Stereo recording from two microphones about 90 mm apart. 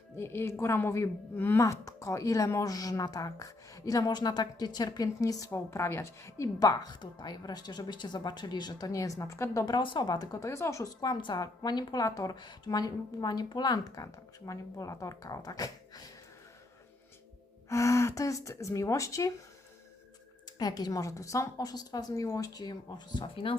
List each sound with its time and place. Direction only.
0.2 s a woman's voice: 25° left (ahead or behind)
1.6 s a woman's voice: 40° left (ahead or behind)
5.5 s a woman's voice: 30° left (ahead or behind)
9.6 s a woman's voice: 60° left (ahead or behind); by 16.1 s 45° left (ahead or behind)
17.7 s a woman's voice: 35° left (ahead or behind)
20.6 s a woman's voice: 45° left (ahead or behind); by 23.6 s 75° left (ahead or behind)